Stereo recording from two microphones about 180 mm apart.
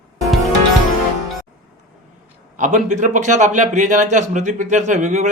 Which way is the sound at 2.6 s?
45° right (ahead or behind).